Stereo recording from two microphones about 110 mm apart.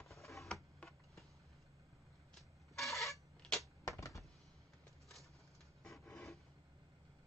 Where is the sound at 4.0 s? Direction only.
30° left (ahead or behind).